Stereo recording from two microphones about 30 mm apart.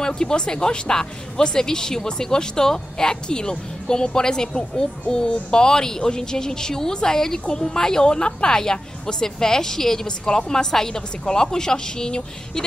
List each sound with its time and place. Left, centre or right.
0.0 s speech: left